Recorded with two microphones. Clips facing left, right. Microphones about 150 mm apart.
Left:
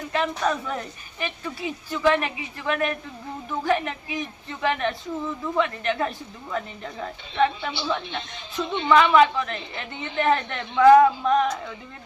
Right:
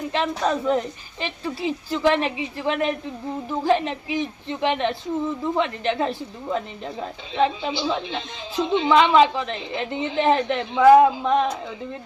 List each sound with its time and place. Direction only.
0.1 s speech: 25° right (ahead or behind)
8.0 s speech: 90° right
8.9 s speech: 25° right (ahead or behind)
9.7 s speech: 90° right
10.2 s speech: 25° right (ahead or behind)